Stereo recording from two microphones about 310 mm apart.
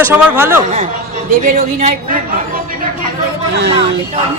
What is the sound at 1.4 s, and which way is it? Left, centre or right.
Speech, right.